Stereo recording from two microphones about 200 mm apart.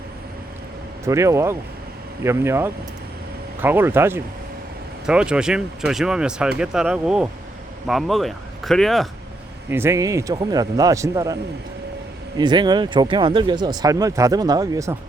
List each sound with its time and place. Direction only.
1.0 s speech: 15° right (ahead or behind); by 9.0 s centre (ahead or behind)
9.6 s speech: 10° right (ahead or behind)
12.4 s speech: 20° right (ahead or behind)